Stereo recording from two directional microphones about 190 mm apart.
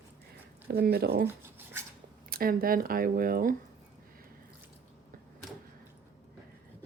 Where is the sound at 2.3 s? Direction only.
50° right (ahead or behind).